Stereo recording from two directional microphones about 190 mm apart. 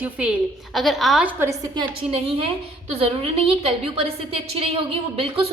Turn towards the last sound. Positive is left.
turn(degrees=-30)  # may be behind; listen again after turning